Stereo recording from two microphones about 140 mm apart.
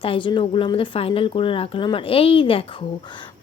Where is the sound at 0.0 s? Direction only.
40° left (ahead or behind).